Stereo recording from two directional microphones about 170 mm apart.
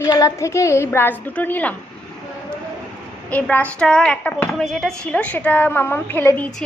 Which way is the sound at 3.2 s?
10° left (ahead or behind).